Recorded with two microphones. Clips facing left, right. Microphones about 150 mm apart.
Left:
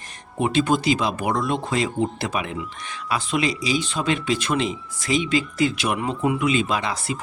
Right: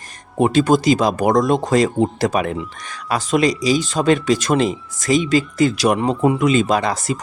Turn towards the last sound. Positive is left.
turn(degrees=-40)  # may be behind; listen again after turning